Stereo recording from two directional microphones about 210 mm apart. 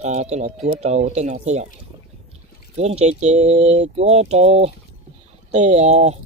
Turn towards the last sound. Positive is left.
turn(degrees=-30)  # may be behind; listen again after turning